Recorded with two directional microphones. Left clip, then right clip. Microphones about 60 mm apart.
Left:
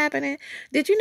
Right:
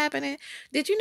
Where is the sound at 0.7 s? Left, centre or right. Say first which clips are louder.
Left 5 dB; left.